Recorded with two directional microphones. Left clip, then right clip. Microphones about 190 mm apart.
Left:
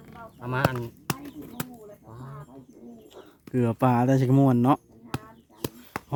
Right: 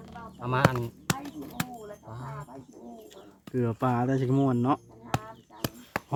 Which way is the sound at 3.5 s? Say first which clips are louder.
Left 4 dB; 45° left (ahead or behind).